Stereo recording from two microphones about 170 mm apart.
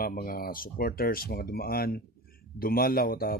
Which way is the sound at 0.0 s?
55° left (ahead or behind).